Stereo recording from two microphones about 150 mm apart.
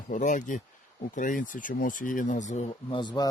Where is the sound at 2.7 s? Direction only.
35° left (ahead or behind).